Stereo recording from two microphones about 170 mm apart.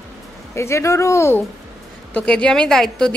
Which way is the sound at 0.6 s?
15° left (ahead or behind).